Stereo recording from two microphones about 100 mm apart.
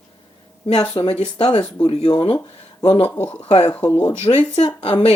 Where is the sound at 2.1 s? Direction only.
55° left (ahead or behind).